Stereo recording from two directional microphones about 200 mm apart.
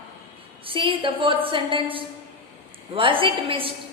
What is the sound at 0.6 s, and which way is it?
A woman's voice, 25° right (ahead or behind).